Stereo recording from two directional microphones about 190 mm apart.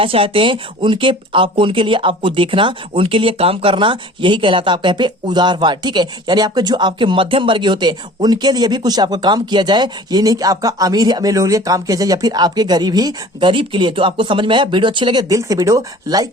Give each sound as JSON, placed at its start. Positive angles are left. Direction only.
{"t": 0.0, "sound": "speech", "side_deg": -30}